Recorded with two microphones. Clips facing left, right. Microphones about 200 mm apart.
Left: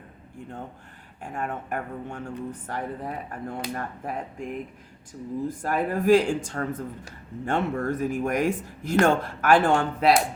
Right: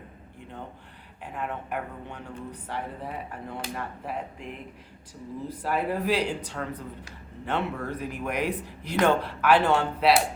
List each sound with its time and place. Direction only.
1.2 s speech: 45° left (ahead or behind)